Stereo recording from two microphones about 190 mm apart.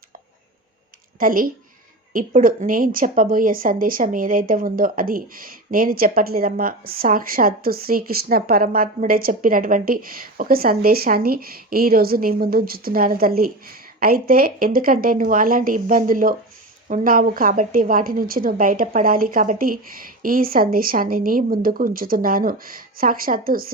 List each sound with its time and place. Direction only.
1.2 s speech: 50° right (ahead or behind)